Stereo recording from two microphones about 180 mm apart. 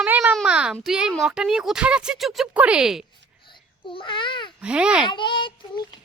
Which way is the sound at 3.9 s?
25° left (ahead or behind).